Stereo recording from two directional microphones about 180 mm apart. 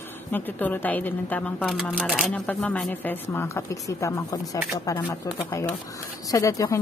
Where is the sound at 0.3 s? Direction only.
10° left (ahead or behind).